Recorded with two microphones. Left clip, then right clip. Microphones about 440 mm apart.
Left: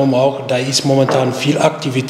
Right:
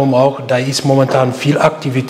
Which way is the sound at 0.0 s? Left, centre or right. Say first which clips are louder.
Right 2 dB; right.